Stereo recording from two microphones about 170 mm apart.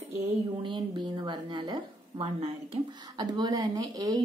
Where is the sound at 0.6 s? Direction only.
25° right (ahead or behind).